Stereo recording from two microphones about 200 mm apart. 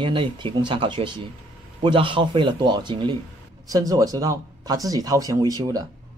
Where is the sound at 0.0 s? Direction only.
25° right (ahead or behind).